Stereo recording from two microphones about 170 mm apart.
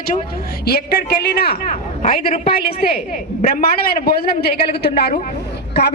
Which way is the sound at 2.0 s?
50° left (ahead or behind).